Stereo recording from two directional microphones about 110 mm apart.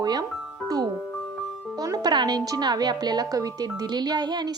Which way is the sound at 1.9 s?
40° right (ahead or behind).